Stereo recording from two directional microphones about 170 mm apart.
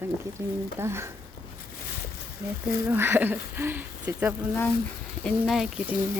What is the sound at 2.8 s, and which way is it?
Speech, 15° right (ahead or behind).